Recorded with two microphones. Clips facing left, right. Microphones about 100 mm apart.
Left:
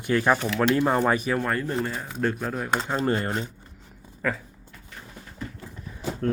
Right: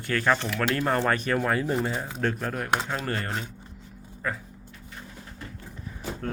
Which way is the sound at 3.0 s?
20° left (ahead or behind).